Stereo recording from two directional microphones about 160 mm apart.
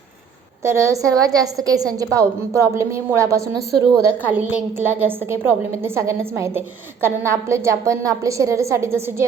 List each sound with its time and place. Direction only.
0.6 s a woman's voice: 20° right (ahead or behind)